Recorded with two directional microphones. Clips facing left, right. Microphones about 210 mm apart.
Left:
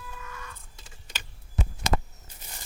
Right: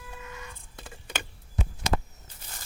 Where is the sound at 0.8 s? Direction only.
60° right (ahead or behind).